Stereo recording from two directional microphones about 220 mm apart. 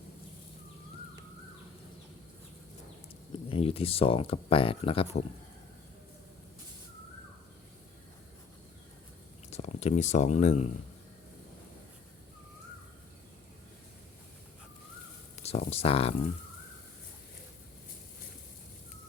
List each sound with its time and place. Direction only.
3.5 s speech: 25° left (ahead or behind)
9.5 s speech: 30° left (ahead or behind)
15.4 s speech: 30° left (ahead or behind)